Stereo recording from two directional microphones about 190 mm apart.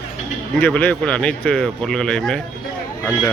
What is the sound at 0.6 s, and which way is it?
A man's voice, 10° left (ahead or behind).